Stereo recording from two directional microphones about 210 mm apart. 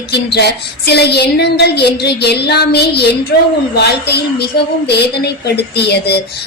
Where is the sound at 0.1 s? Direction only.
50° left (ahead or behind).